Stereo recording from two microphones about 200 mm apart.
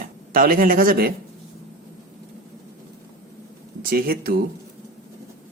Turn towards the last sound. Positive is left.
turn(degrees=-50)  # may be behind; listen again after turning